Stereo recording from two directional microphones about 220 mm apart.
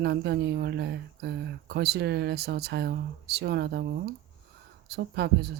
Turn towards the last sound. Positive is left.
turn(degrees=-50)  # may be behind; listen again after turning